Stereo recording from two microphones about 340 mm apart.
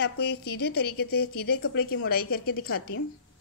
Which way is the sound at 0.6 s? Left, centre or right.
Left.